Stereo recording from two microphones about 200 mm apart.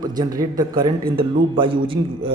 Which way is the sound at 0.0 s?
20° right (ahead or behind).